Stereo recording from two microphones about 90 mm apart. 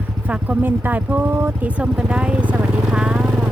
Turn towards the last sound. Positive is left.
turn(degrees=-10)  # may be behind; listen again after turning